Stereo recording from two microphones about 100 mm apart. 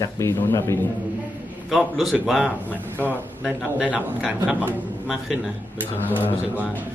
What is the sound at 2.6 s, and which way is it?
Speech, 15° left (ahead or behind).